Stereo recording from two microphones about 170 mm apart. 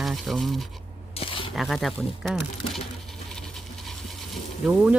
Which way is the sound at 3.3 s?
Centre (ahead or behind).